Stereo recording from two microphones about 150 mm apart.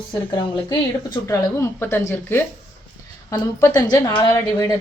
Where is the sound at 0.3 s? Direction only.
30° left (ahead or behind).